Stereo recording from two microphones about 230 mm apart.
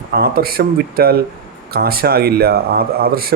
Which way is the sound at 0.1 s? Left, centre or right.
Right.